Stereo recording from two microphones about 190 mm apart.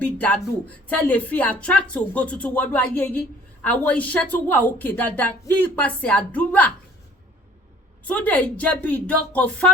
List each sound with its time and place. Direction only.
0.0 s speech: 10° left (ahead or behind)
8.0 s speech: 10° left (ahead or behind)